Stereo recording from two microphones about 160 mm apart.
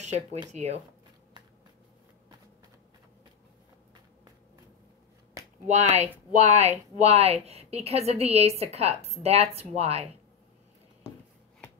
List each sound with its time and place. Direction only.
0.0 s speech: 45° right (ahead or behind)
5.7 s a woman's voice: 45° right (ahead or behind)